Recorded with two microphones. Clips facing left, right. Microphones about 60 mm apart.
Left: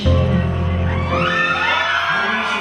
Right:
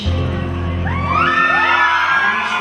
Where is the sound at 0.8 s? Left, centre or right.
Right.